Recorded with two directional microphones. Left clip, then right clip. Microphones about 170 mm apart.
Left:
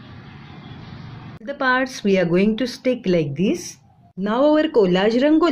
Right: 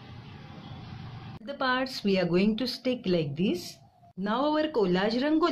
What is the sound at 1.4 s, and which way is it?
Speech, 10° left (ahead or behind).